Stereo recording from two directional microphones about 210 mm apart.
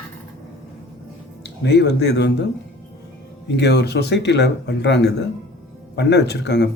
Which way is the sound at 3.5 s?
50° left (ahead or behind).